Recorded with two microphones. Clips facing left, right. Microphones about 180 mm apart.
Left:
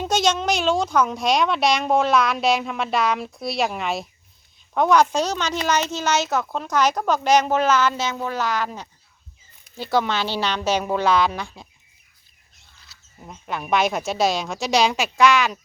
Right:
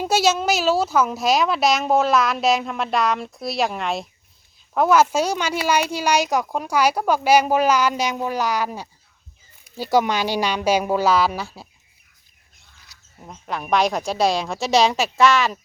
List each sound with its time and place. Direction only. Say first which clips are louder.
0.0 s speech: right 2 dB; 5° right (ahead or behind)
12.9 s a sound: even; 15° right (ahead or behind)
13.5 s speech: right 1 dB; centre (ahead or behind)